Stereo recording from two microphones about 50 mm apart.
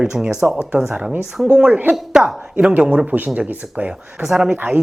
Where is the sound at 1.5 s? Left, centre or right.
Right.